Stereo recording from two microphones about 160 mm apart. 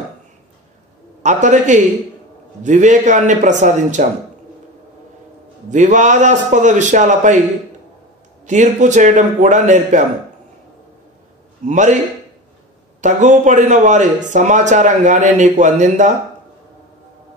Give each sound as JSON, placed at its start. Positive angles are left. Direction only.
{"t": 1.2, "sound": "a man's voice", "side_deg": -50}
{"t": 5.7, "sound": "a man's voice", "side_deg": -50}
{"t": 8.5, "sound": "a man's voice", "side_deg": -50}
{"t": 11.6, "sound": "a man's voice", "side_deg": -50}
{"t": 13.0, "sound": "a man's voice", "side_deg": -50}